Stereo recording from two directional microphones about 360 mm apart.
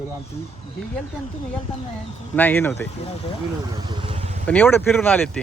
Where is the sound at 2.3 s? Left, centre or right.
Centre.